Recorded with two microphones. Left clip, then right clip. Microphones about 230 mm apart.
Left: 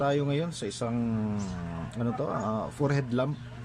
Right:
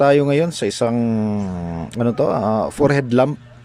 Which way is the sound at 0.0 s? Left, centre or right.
Right.